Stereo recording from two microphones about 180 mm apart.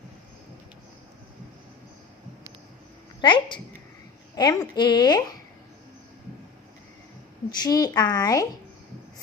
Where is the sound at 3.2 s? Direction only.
25° left (ahead or behind).